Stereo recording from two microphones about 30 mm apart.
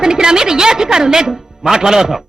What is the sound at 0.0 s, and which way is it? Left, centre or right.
A woman's voice, right.